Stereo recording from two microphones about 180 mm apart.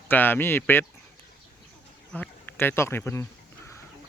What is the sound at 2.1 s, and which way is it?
Speech, 10° left (ahead or behind).